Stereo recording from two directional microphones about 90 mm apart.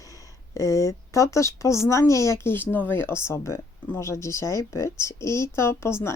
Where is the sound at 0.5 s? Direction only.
35° left (ahead or behind).